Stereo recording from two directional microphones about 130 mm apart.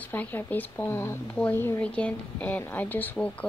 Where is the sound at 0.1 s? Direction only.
15° left (ahead or behind).